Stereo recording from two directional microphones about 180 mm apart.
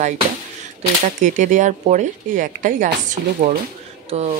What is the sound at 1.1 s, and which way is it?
Speech, 45° right (ahead or behind).